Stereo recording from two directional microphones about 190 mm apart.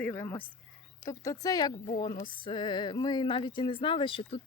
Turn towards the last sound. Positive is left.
turn(degrees=30)  # may be behind; listen again after turning